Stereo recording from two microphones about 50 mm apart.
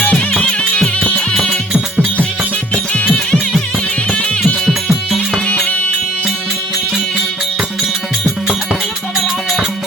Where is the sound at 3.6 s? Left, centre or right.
Left.